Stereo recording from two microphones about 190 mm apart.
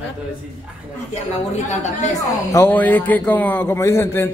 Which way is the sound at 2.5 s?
10° left (ahead or behind).